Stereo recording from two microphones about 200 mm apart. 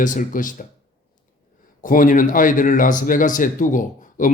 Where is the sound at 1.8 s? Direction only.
40° left (ahead or behind).